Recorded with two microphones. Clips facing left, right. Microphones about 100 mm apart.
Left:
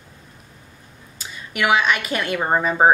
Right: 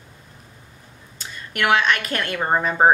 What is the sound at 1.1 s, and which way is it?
A woman's voice, 5° left (ahead or behind).